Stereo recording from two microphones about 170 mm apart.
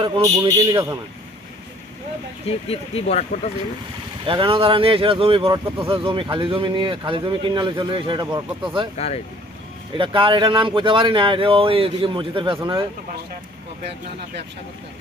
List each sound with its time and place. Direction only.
0.0 s speech: 20° right (ahead or behind)
2.6 s speech: 35° left (ahead or behind)
4.3 s speech: 30° right (ahead or behind)
9.0 s speech: 40° left (ahead or behind)
10.0 s speech: 30° right (ahead or behind)